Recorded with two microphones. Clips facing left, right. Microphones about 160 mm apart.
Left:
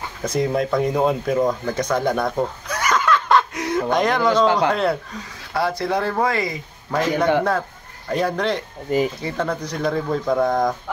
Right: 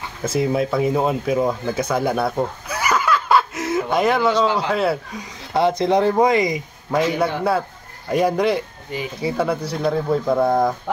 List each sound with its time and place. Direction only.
0.2 s speech: 5° right (ahead or behind)
5.5 s speech: 20° right (ahead or behind); by 10.7 s 5° right (ahead or behind)